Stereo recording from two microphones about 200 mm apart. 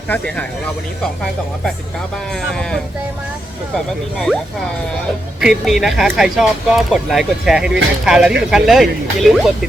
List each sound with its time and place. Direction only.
2.3 s speech: 5° left (ahead or behind)
5.4 s speech: centre (ahead or behind)